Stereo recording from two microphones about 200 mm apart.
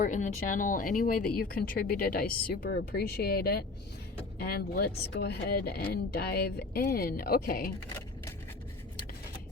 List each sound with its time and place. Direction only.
0.0 s speech: 40° left (ahead or behind)